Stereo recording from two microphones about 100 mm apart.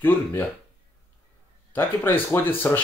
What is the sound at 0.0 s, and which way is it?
Speech, 20° left (ahead or behind).